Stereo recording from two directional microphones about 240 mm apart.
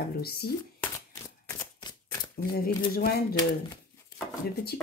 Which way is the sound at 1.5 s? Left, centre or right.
Centre.